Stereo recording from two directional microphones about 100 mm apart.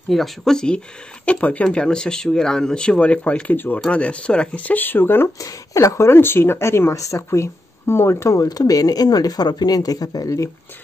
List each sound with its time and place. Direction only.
0.1 s speech: 5° left (ahead or behind); by 5.3 s 20° left (ahead or behind)
5.4 s speech: 35° left (ahead or behind)